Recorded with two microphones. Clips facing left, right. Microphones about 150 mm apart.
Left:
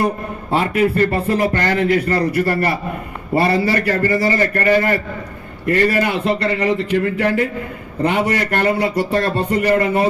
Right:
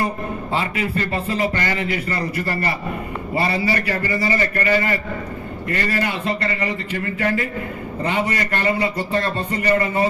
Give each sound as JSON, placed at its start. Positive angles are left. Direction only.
{"t": 0.5, "sound": "a man's voice", "side_deg": 60}
{"t": 5.6, "sound": "a man's voice", "side_deg": 60}
{"t": 8.0, "sound": "a man's voice", "side_deg": 60}
{"t": 8.8, "sound": "a sound", "side_deg": 70}